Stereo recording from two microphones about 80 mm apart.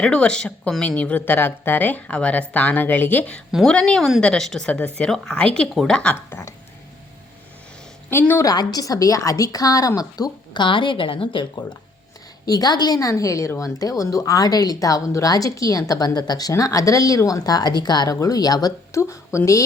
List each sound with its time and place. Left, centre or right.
0.0 s speech: centre
6.0 s speech: centre
8.4 s speech: left
10.5 s a woman's voice: left
12.5 s speech: left
16.5 s speech: left
18.2 s speech: left
18.9 s speech: left